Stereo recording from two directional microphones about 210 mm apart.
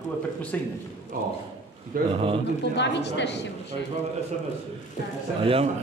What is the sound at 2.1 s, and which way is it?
Speech, 25° right (ahead or behind).